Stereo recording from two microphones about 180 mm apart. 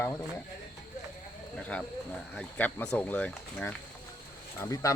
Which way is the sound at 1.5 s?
5° left (ahead or behind).